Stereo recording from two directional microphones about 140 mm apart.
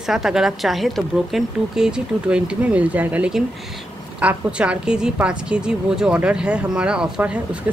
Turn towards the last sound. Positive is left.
turn(degrees=-10)  # may be behind; listen again after turning